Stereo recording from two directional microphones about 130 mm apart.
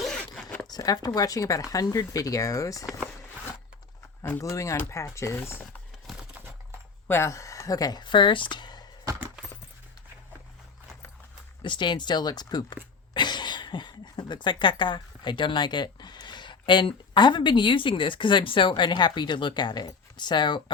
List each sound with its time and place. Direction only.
0.0 s zipper: 5° left (ahead or behind)
0.7 s speech: 30° left (ahead or behind)
4.2 s speech: 20° left (ahead or behind)
7.1 s speech: 20° left (ahead or behind); by 8.8 s 35° left (ahead or behind)
11.6 s speech: 35° left (ahead or behind)